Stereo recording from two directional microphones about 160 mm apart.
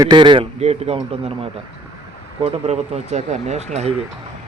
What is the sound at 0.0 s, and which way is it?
A man's voice, 30° right (ahead or behind).